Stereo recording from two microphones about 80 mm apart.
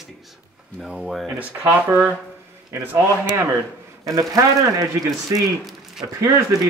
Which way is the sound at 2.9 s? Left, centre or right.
Right.